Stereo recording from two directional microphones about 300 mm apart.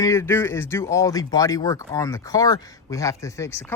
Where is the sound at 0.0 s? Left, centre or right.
Centre.